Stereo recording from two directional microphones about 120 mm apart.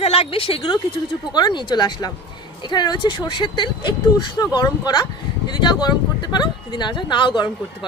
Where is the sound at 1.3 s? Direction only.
35° left (ahead or behind).